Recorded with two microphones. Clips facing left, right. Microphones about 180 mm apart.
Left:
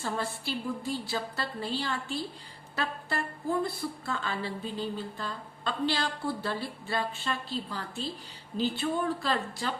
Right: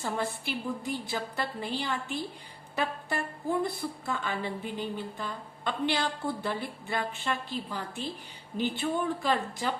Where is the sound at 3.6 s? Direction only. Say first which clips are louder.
Right 1 dB; 15° right (ahead or behind).